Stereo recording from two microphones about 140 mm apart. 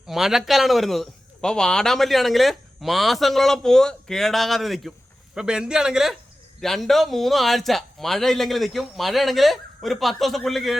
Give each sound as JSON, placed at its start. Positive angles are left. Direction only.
{"t": 0.1, "sound": "a man's voice", "side_deg": -5}